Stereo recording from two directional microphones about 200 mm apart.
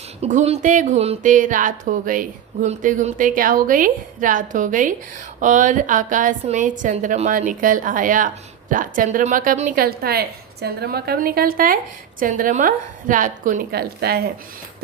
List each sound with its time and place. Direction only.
0.2 s a woman's voice: 35° right (ahead or behind); by 14.2 s 50° right (ahead or behind)